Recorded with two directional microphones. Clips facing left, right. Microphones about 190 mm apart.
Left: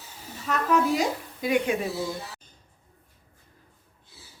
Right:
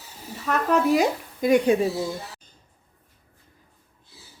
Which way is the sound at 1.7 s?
35° right (ahead or behind).